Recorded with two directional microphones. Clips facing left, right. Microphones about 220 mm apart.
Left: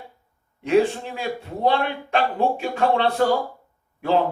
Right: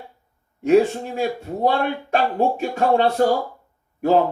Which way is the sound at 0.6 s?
45° right (ahead or behind).